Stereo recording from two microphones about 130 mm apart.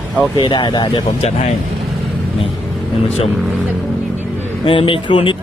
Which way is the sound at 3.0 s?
55° left (ahead or behind).